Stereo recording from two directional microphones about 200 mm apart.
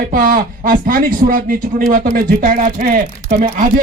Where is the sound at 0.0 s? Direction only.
45° right (ahead or behind).